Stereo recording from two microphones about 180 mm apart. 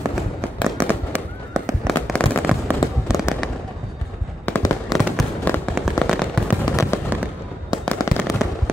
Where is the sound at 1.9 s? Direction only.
5° left (ahead or behind).